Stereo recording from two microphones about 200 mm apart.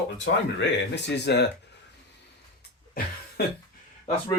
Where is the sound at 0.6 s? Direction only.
60° left (ahead or behind).